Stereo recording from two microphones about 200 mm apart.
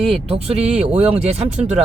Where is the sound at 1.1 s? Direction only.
30° right (ahead or behind).